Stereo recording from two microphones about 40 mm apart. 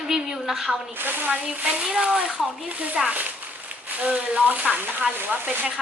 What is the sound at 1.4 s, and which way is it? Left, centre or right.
Speech, right.